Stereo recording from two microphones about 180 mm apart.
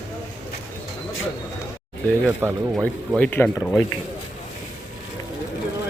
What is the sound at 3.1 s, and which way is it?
Speech, 10° left (ahead or behind).